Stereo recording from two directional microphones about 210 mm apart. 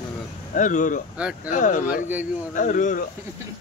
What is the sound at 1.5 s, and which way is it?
Speech, 35° left (ahead or behind).